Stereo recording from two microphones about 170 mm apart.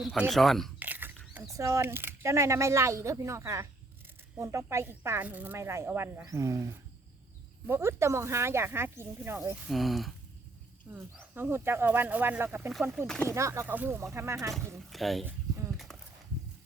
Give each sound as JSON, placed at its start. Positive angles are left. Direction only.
{"t": 0.0, "sound": "speech", "side_deg": 0}
{"t": 0.8, "sound": "a sound", "side_deg": -10}
{"t": 1.5, "sound": "speech", "side_deg": -20}
{"t": 9.6, "sound": "speech", "side_deg": 0}
{"t": 10.9, "sound": "speech", "side_deg": -10}
{"t": 13.2, "sound": "speech", "side_deg": -15}
{"t": 14.8, "sound": "speech", "side_deg": 0}
{"t": 15.9, "sound": "a sound", "side_deg": 0}